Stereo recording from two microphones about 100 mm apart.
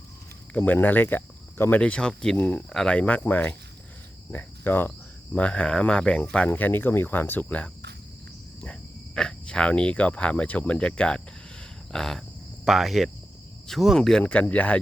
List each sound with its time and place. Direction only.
0.5 s speech: 15° left (ahead or behind)
1.8 s speech: 10° left (ahead or behind)
4.3 s cricket: 20° left (ahead or behind)
5.3 s speech: 15° left (ahead or behind)
6.5 s speech: 20° left (ahead or behind)
11.9 s a sound: 5° left (ahead or behind)
12.6 s speech: centre (ahead or behind); by 14.8 s 15° left (ahead or behind)